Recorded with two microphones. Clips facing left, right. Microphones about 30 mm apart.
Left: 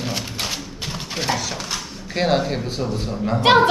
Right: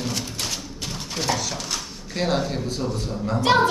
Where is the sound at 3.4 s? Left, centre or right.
Left.